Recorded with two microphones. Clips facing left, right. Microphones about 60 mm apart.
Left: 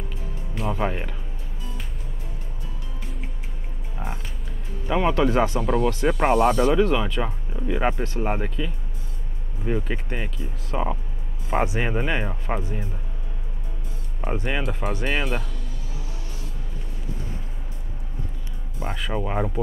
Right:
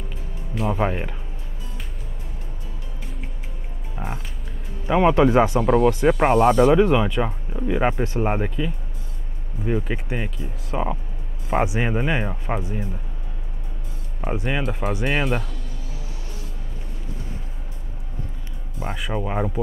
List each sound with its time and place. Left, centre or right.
0.6 s speech: centre
3.9 s music: centre
4.8 s speech: centre
5.6 s speech: centre
14.2 s speech: centre
18.8 s speech: centre